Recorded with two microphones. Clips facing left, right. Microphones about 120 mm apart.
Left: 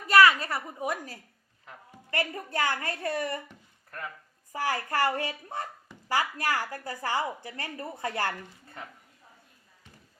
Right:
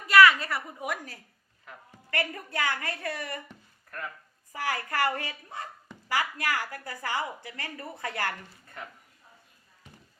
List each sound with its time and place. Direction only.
0.1 s a woman's voice: 35° left (ahead or behind)
4.5 s a woman's voice: 30° left (ahead or behind)